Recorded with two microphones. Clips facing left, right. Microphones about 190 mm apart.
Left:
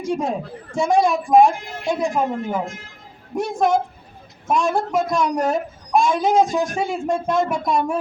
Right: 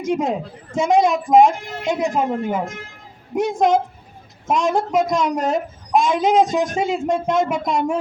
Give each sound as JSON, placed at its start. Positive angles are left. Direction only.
{"t": 0.0, "sound": "a woman's voice", "side_deg": -20}